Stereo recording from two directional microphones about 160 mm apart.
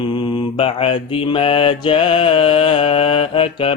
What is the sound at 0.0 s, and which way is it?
Mantra, 35° left (ahead or behind).